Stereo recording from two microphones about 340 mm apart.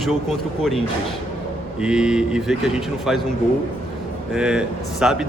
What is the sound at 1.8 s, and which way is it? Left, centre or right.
Speech, centre.